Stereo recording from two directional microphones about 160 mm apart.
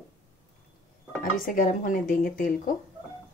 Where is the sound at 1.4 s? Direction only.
60° left (ahead or behind).